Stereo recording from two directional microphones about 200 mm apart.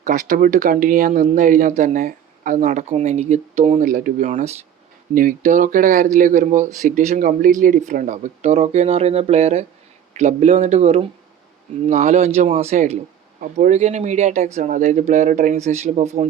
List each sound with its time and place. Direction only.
0.0 s speech: 40° right (ahead or behind)